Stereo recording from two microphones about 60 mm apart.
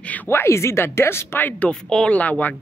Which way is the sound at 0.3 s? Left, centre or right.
Left.